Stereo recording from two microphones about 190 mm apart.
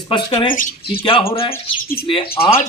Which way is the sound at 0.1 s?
25° left (ahead or behind).